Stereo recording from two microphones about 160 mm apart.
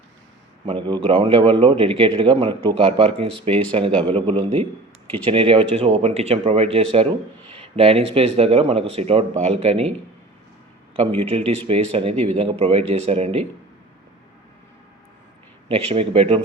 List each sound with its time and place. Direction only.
0.6 s a man's voice: 30° right (ahead or behind)
10.9 s a man's voice: 40° right (ahead or behind)
15.7 s a man's voice: 35° right (ahead or behind)